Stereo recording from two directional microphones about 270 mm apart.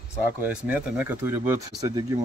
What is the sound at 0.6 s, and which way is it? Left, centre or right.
Speech, centre.